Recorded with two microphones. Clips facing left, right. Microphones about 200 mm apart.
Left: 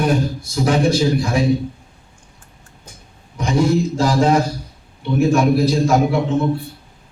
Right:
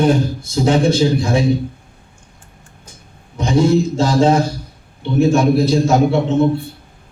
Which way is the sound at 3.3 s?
25° right (ahead or behind).